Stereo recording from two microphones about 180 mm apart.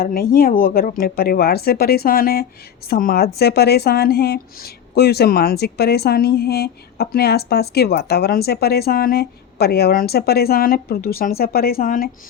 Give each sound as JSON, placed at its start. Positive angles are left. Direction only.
{"t": 0.0, "sound": "speech", "side_deg": 55}